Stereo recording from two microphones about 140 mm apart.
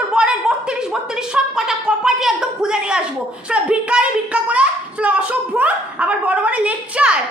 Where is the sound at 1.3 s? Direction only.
5° right (ahead or behind).